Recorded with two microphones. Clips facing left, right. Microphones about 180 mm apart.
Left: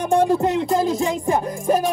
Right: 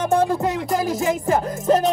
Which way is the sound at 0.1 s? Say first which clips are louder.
Left 4 dB; 15° left (ahead or behind).